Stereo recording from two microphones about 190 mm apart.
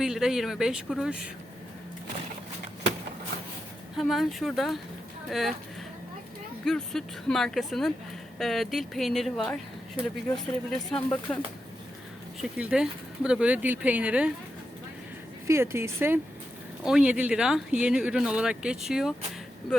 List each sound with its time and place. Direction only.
0.0 s speech: centre (ahead or behind)
3.9 s speech: centre (ahead or behind)
6.7 s speech: 5° left (ahead or behind)
12.4 s speech: 5° right (ahead or behind)
15.4 s speech: 15° right (ahead or behind)